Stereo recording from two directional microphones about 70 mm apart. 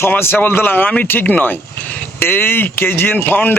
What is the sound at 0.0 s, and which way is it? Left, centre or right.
A man's voice, left.